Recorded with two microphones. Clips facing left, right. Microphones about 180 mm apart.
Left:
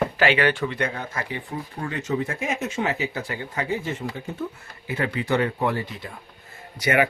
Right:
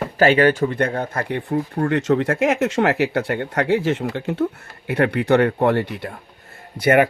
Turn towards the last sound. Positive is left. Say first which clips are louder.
# right 6 dB
turn(degrees=-55)  # may be behind; listen again after turning